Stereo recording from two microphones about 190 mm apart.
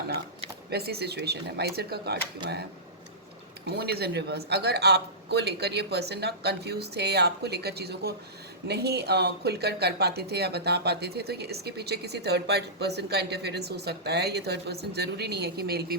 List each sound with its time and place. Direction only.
0.7 s speech: 55° right (ahead or behind)
3.7 s speech: 55° right (ahead or behind)